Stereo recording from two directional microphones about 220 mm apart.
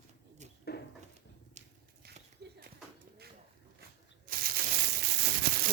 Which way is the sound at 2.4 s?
50° right (ahead or behind).